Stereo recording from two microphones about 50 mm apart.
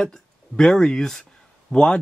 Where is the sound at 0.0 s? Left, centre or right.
Centre.